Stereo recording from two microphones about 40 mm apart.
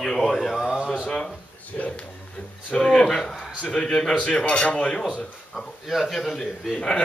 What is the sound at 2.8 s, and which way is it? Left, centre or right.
Speech, centre.